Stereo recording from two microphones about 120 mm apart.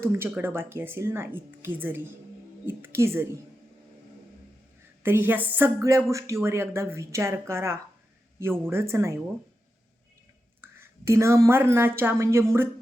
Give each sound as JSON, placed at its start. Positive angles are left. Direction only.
{"t": 0.0, "sound": "speech", "side_deg": -20}
{"t": 5.0, "sound": "speech", "side_deg": -20}
{"t": 10.6, "sound": "a woman's voice", "side_deg": -20}